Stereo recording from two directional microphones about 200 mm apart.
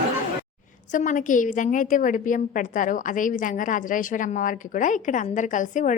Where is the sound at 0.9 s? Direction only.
40° left (ahead or behind).